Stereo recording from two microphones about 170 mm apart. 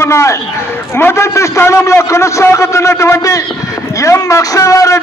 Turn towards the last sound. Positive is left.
turn(degrees=20)  # may be behind; listen again after turning